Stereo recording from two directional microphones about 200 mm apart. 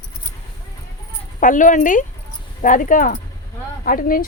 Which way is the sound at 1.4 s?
40° left (ahead or behind).